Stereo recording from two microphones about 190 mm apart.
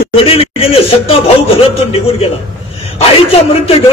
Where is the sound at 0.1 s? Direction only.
30° left (ahead or behind).